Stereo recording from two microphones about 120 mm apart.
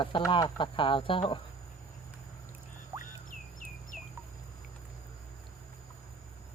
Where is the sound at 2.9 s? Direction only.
20° right (ahead or behind).